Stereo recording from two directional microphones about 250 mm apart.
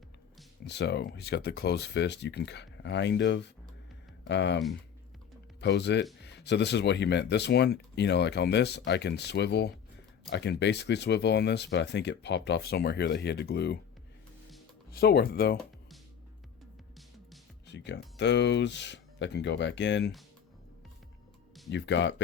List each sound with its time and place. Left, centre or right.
0.6 s speech: left
14.8 s speech: left
17.7 s speech: left
21.7 s speech: left